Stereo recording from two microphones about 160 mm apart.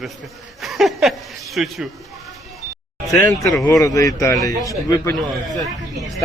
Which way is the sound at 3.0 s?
20° left (ahead or behind).